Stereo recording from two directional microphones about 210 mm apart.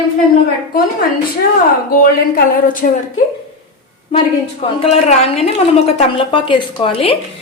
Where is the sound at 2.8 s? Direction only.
40° left (ahead or behind).